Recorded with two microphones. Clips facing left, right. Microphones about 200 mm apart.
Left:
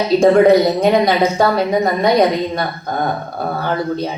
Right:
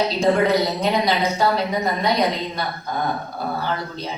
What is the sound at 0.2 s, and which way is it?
A woman's voice, 50° left (ahead or behind).